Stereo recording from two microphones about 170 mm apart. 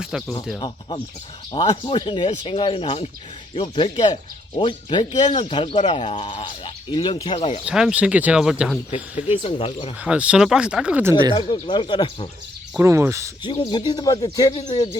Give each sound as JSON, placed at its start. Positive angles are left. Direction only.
{"t": 0.0, "sound": "speech", "side_deg": -5}
{"t": 1.5, "sound": "speech", "side_deg": 25}
{"t": 7.6, "sound": "speech", "side_deg": -5}
{"t": 9.4, "sound": "speech", "side_deg": 35}
{"t": 10.0, "sound": "speech", "side_deg": -5}
{"t": 11.3, "sound": "speech", "side_deg": 30}
{"t": 12.8, "sound": "speech", "side_deg": -15}
{"t": 13.4, "sound": "speech", "side_deg": 25}